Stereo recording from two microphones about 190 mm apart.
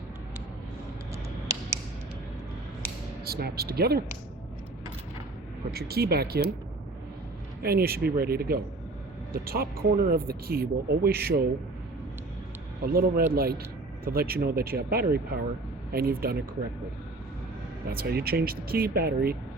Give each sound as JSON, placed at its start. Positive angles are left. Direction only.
{"t": 1.1, "sound": "a sound", "side_deg": -15}
{"t": 3.2, "sound": "speech", "side_deg": -55}
{"t": 5.7, "sound": "speech", "side_deg": -55}
{"t": 7.6, "sound": "speech", "side_deg": -55}
{"t": 12.8, "sound": "speech", "side_deg": -50}
{"t": 17.8, "sound": "speech", "side_deg": -55}